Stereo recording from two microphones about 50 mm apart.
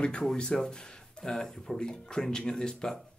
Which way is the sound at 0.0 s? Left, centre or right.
Centre.